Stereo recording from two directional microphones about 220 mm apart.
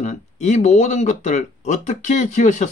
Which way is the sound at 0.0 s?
30° left (ahead or behind).